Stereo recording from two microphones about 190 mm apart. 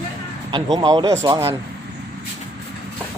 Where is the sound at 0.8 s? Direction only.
25° right (ahead or behind).